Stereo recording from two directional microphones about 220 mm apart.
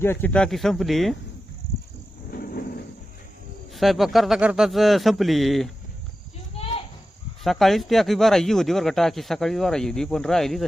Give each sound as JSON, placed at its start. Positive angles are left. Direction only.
{"t": 0.0, "sound": "speech", "side_deg": 10}
{"t": 2.3, "sound": "a sound", "side_deg": 40}
{"t": 3.8, "sound": "speech", "side_deg": 0}
{"t": 7.4, "sound": "speech", "side_deg": 0}